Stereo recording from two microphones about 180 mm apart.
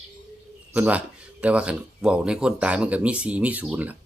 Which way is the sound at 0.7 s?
10° right (ahead or behind).